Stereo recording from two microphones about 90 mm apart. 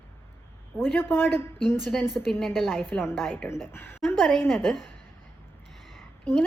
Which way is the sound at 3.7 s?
25° left (ahead or behind).